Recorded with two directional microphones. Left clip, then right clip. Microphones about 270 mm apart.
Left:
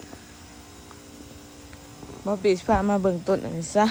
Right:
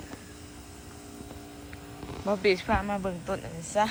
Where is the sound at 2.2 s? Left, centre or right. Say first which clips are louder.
Left 3 dB; centre.